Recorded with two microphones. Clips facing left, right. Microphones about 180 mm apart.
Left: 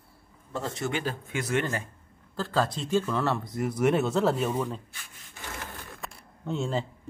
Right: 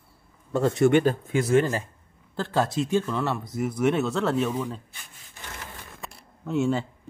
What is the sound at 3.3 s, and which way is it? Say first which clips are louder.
Speech: right 1 dB; centre (ahead or behind).